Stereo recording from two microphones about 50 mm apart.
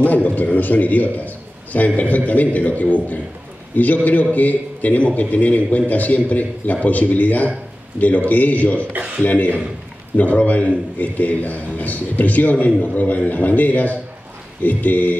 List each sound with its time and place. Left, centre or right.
0.0 s a man's voice: left
8.9 s speech: right
9.2 s a man's voice: left